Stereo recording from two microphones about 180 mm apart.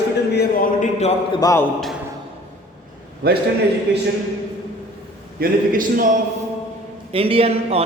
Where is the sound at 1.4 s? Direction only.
15° left (ahead or behind).